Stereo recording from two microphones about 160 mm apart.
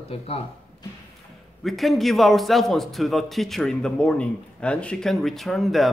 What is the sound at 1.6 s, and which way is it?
A man's voice, centre (ahead or behind).